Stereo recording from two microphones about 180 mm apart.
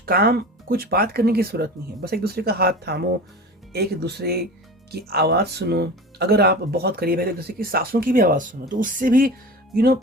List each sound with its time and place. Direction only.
0.0 s speech: 55° right (ahead or behind)